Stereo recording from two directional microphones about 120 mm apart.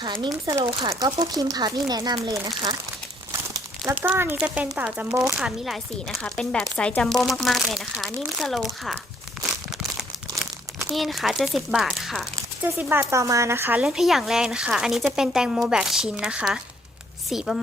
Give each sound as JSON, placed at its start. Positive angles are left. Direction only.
{"t": 0.0, "sound": "speech", "side_deg": -40}
{"t": 4.0, "sound": "speech", "side_deg": -15}
{"t": 9.7, "sound": "crumpling", "side_deg": 0}
{"t": 12.4, "sound": "speech", "side_deg": -20}